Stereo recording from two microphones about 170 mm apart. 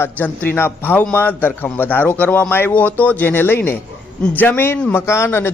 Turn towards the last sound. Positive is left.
turn(degrees=15)  # may be behind; listen again after turning